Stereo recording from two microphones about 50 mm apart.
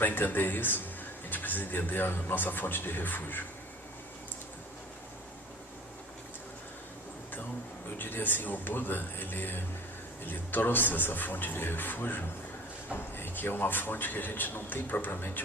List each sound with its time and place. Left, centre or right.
0.0 s a man's voice: left
7.9 s a man's voice: left